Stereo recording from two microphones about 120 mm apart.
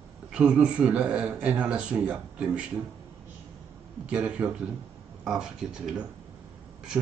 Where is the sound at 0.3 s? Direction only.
10° right (ahead or behind).